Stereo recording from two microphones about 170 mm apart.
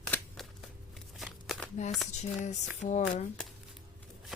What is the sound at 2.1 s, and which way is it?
Speech, 45° left (ahead or behind).